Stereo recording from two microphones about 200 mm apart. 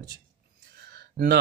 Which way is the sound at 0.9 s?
50° right (ahead or behind).